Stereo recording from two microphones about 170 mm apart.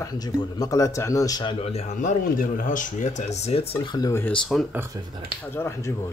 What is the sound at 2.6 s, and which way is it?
Speech, 45° left (ahead or behind).